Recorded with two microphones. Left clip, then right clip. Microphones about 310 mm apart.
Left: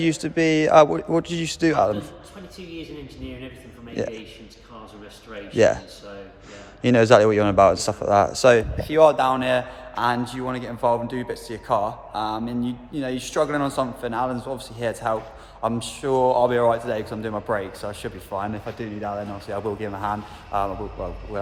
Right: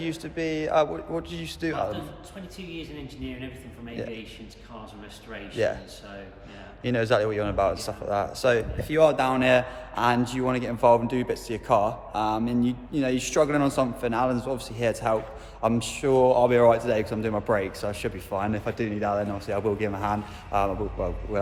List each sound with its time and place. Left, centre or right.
0.0 s a man's voice: left
4.0 s a man's voice: left
5.5 s a man's voice: left
6.8 s speech: left; by 21.1 s centre